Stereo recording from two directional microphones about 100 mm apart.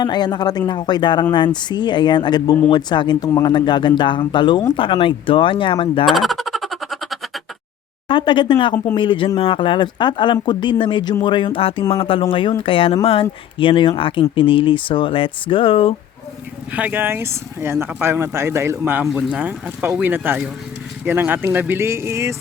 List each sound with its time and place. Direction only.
0.0 s speech: 45° left (ahead or behind); by 6.1 s 60° left (ahead or behind)
6.1 s a sound: centre (ahead or behind)
8.0 s speech: 55° left (ahead or behind)
16.7 s speech: 20° right (ahead or behind)